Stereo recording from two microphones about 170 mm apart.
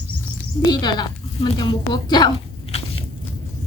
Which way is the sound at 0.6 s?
25° left (ahead or behind).